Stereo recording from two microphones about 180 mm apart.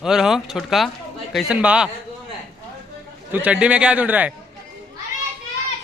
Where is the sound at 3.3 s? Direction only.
5° right (ahead or behind).